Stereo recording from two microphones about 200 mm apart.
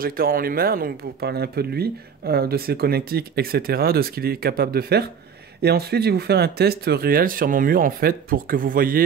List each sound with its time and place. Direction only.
0.0 s speech: 45° right (ahead or behind)